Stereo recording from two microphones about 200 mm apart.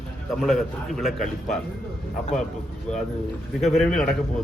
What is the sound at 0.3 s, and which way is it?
A man's voice, centre (ahead or behind).